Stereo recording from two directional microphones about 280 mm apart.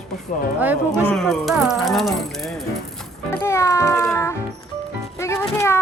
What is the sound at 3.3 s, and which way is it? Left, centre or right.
Speech, centre.